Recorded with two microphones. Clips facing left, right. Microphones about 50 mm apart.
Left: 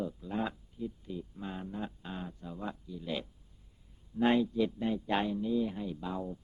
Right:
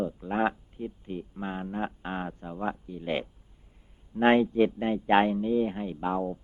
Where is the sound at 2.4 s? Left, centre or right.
Right.